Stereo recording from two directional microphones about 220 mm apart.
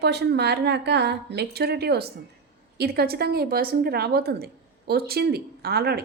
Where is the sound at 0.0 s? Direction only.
50° right (ahead or behind).